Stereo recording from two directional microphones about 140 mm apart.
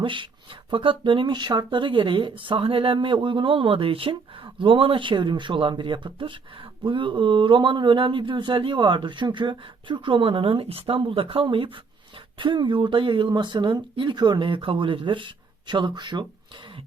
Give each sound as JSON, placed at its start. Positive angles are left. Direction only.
{"t": 0.0, "sound": "speech", "side_deg": -35}